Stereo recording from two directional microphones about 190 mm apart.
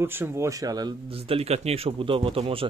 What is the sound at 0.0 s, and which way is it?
Speech, 10° right (ahead or behind).